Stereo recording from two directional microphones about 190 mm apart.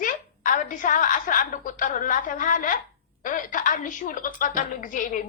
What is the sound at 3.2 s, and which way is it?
A woman's voice, 45° left (ahead or behind).